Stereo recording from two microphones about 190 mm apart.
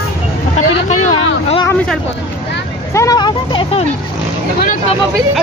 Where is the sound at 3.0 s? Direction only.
20° left (ahead or behind).